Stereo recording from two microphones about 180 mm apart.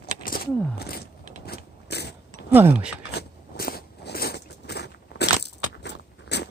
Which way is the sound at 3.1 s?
55° left (ahead or behind).